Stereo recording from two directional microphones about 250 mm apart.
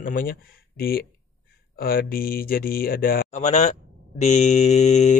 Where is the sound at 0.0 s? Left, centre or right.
Left.